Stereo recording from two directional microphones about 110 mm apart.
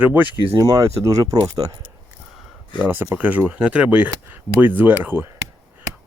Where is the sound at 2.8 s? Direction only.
20° right (ahead or behind).